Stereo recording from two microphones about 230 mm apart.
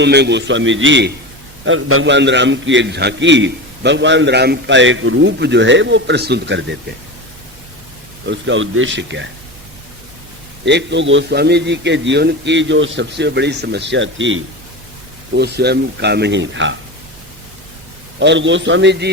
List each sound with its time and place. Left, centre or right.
0.0 s a man's voice: right
8.3 s a man's voice: right
10.7 s a man's voice: right
18.2 s a man's voice: right